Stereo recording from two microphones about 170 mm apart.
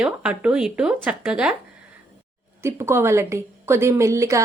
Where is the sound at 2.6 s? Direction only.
15° right (ahead or behind).